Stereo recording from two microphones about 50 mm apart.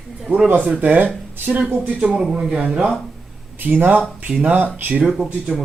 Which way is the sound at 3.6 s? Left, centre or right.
Right.